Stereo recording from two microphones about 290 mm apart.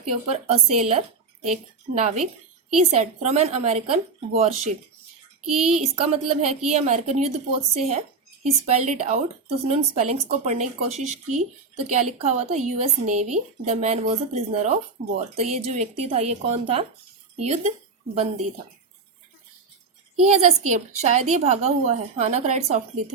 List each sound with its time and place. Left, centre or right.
0.1 s speech: right
5.5 s speech: centre
5.8 s speech: right
20.3 s speech: right